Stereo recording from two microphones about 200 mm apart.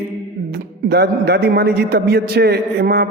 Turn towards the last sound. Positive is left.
turn(degrees=-50)  # may be behind; listen again after turning